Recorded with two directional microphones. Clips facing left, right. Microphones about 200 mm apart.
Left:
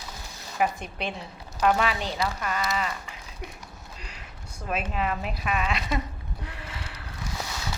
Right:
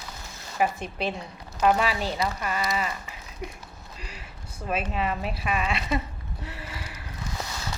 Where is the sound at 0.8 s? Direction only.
35° right (ahead or behind).